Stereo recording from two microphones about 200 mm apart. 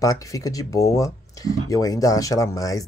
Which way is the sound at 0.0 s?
15° left (ahead or behind).